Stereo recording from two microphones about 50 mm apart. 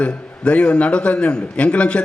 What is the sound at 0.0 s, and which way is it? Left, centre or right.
A man's voice, left.